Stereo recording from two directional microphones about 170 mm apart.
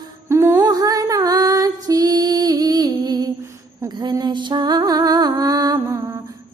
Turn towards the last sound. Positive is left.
turn(degrees=-20)  # may be behind; listen again after turning